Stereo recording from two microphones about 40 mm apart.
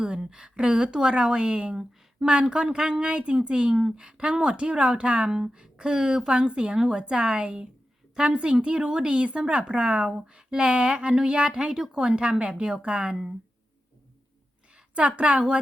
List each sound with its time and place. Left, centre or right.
0.0 s a woman's voice: right
1.7 s a sound: centre
2.3 s a woman's voice: right
5.3 s a woman's voice: centre
14.7 s a woman's voice: right